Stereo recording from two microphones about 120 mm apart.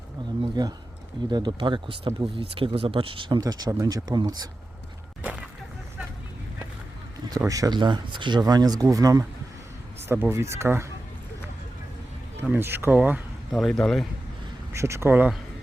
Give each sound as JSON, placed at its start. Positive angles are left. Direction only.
{"t": 0.6, "sound": "speech", "side_deg": -35}
{"t": 5.2, "sound": "a sound", "side_deg": -10}
{"t": 7.3, "sound": "speech", "side_deg": -30}
{"t": 12.4, "sound": "speech", "side_deg": -20}
{"t": 13.5, "sound": "speech", "side_deg": 0}
{"t": 14.7, "sound": "speech", "side_deg": -25}